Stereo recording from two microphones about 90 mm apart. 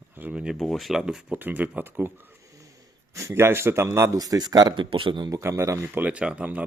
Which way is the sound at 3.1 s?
35° right (ahead or behind).